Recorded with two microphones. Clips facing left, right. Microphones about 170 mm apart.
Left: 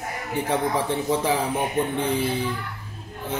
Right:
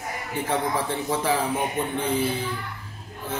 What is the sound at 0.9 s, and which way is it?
Speech, 15° left (ahead or behind).